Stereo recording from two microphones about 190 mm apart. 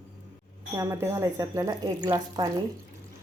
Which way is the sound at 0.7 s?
15° right (ahead or behind).